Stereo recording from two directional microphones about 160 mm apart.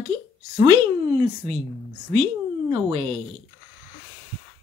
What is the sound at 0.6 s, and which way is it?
Speech, 30° right (ahead or behind).